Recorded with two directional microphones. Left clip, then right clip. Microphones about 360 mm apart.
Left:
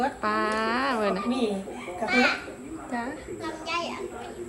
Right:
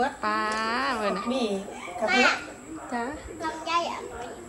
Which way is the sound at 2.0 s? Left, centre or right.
Right.